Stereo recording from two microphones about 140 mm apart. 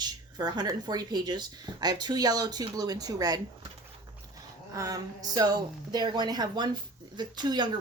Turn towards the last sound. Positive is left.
turn(degrees=-30)  # may be behind; listen again after turning